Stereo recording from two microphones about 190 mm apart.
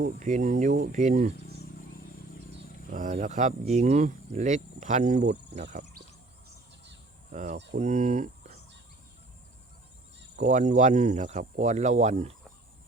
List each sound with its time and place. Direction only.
0.0 s speech: 40° right (ahead or behind)
2.9 s speech: 40° right (ahead or behind)
7.3 s speech: 40° right (ahead or behind)
10.3 s speech: 40° right (ahead or behind)